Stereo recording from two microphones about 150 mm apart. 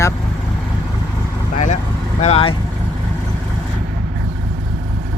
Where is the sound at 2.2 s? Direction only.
45° left (ahead or behind).